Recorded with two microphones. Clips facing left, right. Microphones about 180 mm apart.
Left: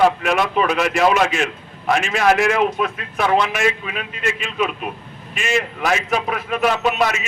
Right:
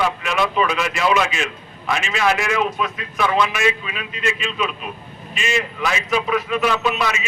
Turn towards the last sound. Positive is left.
turn(degrees=50)  # may be behind; listen again after turning